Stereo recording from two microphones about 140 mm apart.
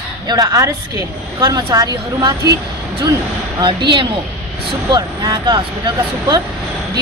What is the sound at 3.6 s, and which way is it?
Speech, 35° right (ahead or behind).